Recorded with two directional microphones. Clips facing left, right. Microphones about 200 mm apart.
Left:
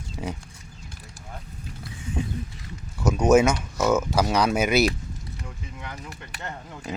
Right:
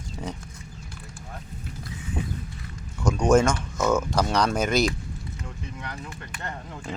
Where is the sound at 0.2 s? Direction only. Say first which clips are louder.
Left 2 dB; 5° left (ahead or behind).